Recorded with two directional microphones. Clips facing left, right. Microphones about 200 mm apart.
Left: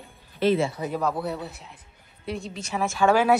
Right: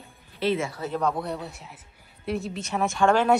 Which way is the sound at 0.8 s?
5° left (ahead or behind).